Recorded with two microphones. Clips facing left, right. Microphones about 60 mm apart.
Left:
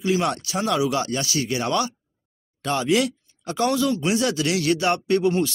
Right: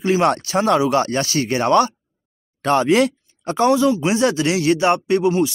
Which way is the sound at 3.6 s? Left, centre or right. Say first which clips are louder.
Right 6 dB; right.